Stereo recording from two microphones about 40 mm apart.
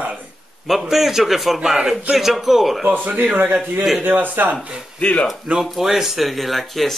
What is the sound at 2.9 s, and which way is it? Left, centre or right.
Speech, right.